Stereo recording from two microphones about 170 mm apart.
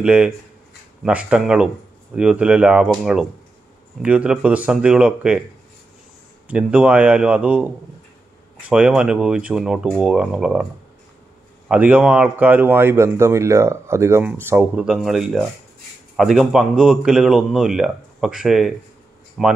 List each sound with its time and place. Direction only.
0.0 s speech: 5° right (ahead or behind)
6.4 s speech: 5° right (ahead or behind)
8.6 s speech: 5° right (ahead or behind)